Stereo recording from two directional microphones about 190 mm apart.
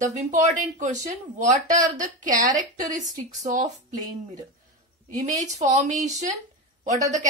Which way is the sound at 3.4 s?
40° right (ahead or behind).